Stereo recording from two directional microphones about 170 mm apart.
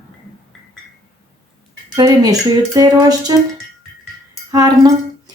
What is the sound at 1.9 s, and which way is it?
Speech, 20° right (ahead or behind).